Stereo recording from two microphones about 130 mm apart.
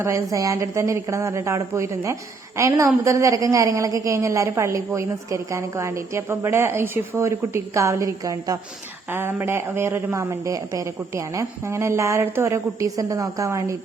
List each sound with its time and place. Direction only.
0.0 s a woman's voice: 25° right (ahead or behind)
9.1 s a woman's voice: 15° right (ahead or behind)